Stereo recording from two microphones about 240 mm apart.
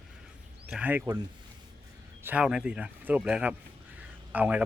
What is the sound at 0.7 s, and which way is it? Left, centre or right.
Speech, centre.